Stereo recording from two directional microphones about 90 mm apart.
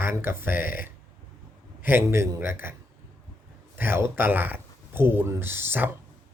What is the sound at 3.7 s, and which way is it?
Speech, 25° right (ahead or behind).